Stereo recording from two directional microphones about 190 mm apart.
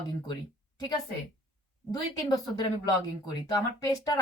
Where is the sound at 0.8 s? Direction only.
20° left (ahead or behind).